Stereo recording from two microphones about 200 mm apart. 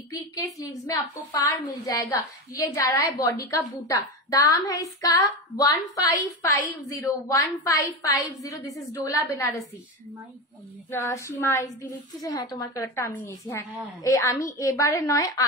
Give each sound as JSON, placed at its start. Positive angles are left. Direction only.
{"t": 0.1, "sound": "a woman's voice", "side_deg": 15}
{"t": 2.6, "sound": "a woman's voice", "side_deg": 15}
{"t": 10.9, "sound": "a woman's voice", "side_deg": 15}